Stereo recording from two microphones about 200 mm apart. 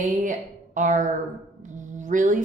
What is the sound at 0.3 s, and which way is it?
A woman's voice, 40° right (ahead or behind).